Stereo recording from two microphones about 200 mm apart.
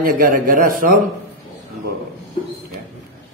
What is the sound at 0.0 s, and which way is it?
Speech, 45° right (ahead or behind).